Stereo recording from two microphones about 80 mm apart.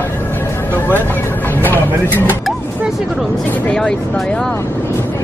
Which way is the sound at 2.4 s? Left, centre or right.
Centre.